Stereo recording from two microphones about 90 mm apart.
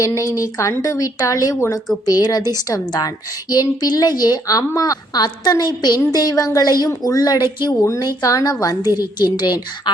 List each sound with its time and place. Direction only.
0.0 s a woman's voice: 35° left (ahead or behind); by 7.9 s 50° left (ahead or behind)
8.0 s a woman's voice: 40° left (ahead or behind)
9.0 s a woman's voice: 50° left (ahead or behind)